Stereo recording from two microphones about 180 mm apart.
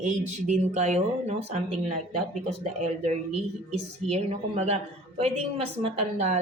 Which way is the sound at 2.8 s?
40° right (ahead or behind).